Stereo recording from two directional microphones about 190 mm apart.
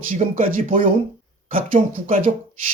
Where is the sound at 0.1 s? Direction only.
45° right (ahead or behind).